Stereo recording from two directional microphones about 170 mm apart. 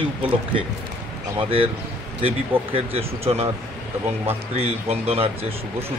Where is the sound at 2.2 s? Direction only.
35° right (ahead or behind).